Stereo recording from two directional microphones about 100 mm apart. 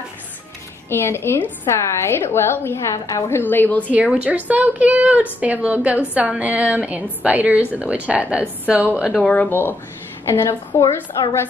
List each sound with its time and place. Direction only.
0.8 s a woman's voice: 25° left (ahead or behind)
3.9 s a woman's voice: 10° right (ahead or behind)
9.1 s a woman's voice: 15° left (ahead or behind)